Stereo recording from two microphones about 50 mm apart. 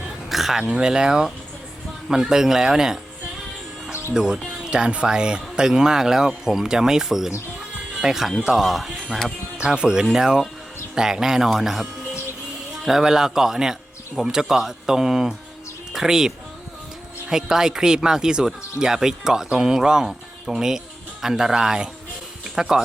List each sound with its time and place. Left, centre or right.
0.3 s dog: centre
0.7 s speech: centre
4.1 s speech: centre
9.6 s speech: centre